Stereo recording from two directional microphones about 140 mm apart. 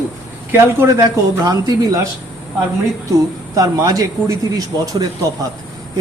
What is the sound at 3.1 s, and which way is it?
Speech, 25° right (ahead or behind).